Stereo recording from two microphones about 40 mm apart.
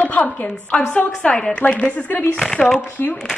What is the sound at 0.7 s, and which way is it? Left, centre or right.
Speech, left.